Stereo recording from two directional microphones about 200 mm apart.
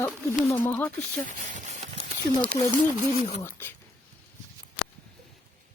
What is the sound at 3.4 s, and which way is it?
Speech, 10° left (ahead or behind).